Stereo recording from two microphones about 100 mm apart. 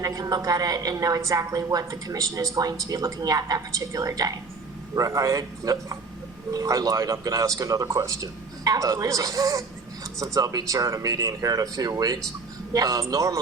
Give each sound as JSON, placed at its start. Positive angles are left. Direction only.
{"t": 0.0, "sound": "a woman's voice", "side_deg": -35}